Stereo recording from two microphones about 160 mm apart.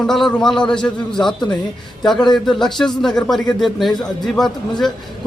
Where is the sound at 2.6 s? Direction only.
Centre (ahead or behind).